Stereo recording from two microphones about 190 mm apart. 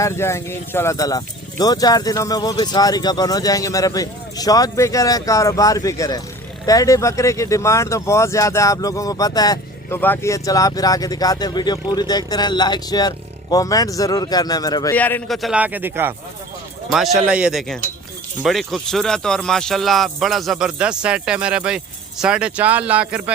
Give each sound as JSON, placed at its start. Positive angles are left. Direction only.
{"t": 0.0, "sound": "speech", "side_deg": 15}
{"t": 14.9, "sound": "speech", "side_deg": 10}
{"t": 16.9, "sound": "speech", "side_deg": 0}